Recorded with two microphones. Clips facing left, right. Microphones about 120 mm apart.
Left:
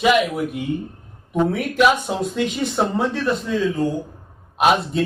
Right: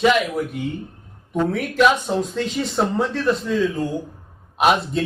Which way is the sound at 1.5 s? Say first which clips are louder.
Right 1 dB; 5° left (ahead or behind).